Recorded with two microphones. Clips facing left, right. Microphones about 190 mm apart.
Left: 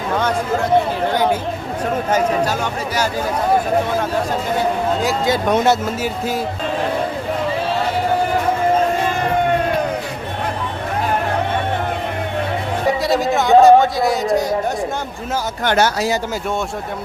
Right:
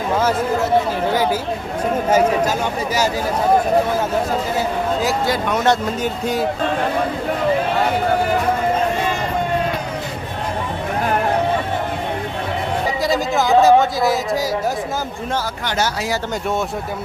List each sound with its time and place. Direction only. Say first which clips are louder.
1.1 s speech: left 1 dB; 5° right (ahead or behind)
5.6 s speech: left 1 dB; 5° left (ahead or behind)
13.0 s speech: left 1 dB; centre (ahead or behind)
15.6 s speech: left 8 dB; 60° left (ahead or behind)